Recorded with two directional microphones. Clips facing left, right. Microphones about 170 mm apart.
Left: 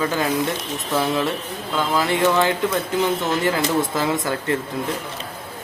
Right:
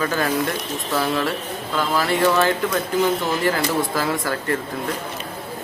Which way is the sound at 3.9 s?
20° left (ahead or behind).